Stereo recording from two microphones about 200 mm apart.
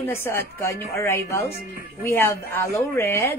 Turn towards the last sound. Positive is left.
turn(degrees=10)  # may be behind; listen again after turning